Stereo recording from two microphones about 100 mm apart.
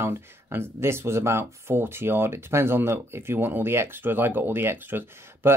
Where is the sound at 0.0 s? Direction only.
25° right (ahead or behind).